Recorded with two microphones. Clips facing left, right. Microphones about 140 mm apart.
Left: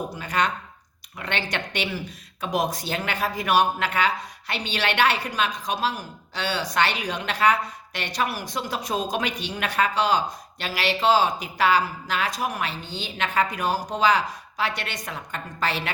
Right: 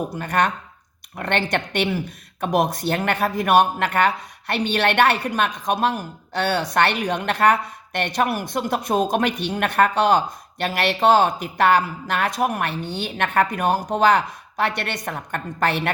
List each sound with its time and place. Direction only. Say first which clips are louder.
0.2 s speech: right 4 dB; 55° right (ahead or behind)